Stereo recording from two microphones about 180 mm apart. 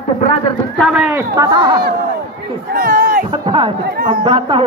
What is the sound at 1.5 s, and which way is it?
Speech, 25° right (ahead or behind).